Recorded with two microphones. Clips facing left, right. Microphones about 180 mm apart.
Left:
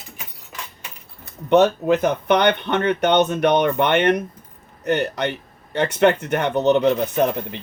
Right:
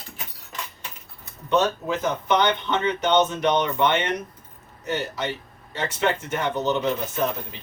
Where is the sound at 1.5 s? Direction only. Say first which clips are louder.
Left 7 dB; 60° left (ahead or behind).